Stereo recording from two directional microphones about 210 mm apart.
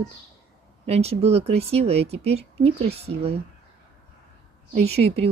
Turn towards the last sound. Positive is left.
turn(degrees=-30)  # may be behind; listen again after turning